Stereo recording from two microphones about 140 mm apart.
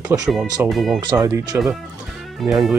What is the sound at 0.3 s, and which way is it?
Speech, centre (ahead or behind).